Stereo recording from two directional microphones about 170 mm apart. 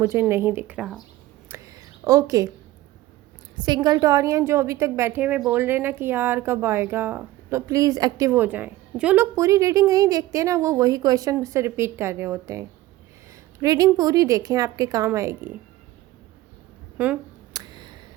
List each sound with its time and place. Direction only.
0.0 s speech: 15° right (ahead or behind)
1.5 s whispering: 15° right (ahead or behind)
3.6 s speech: 25° right (ahead or behind); by 9.2 s 10° right (ahead or behind)
9.3 s a woman's voice: 20° right (ahead or behind)
17.0 s speech: 5° right (ahead or behind)
17.5 s a sound: 25° right (ahead or behind)